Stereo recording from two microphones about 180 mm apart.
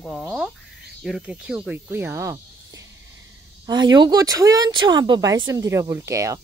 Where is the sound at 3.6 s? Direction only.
25° right (ahead or behind).